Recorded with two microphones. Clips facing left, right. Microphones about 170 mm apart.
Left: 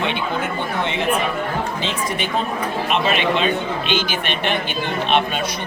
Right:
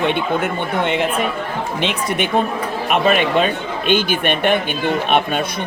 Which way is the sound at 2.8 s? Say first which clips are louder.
Right 4 dB; 50° right (ahead or behind).